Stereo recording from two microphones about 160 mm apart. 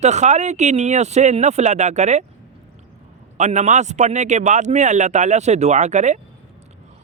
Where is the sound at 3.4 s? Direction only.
45° right (ahead or behind).